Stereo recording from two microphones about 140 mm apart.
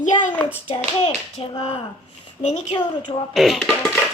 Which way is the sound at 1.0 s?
45° left (ahead or behind).